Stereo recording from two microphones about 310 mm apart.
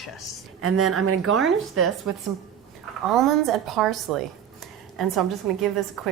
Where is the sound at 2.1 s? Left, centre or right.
Right.